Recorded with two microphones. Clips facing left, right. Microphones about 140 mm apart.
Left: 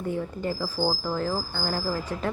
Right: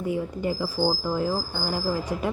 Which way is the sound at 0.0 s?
10° right (ahead or behind).